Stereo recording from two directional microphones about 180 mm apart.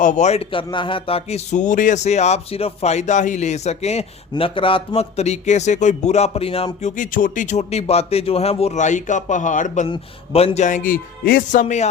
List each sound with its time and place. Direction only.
0.0 s speech: 45° left (ahead or behind)
6.9 s speech: 45° left (ahead or behind)
11.6 s speech: 40° left (ahead or behind)